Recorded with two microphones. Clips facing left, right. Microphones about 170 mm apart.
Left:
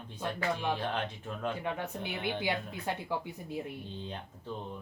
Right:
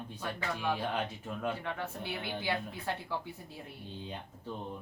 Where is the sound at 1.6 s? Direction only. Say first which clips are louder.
Left 2 dB; 20° left (ahead or behind).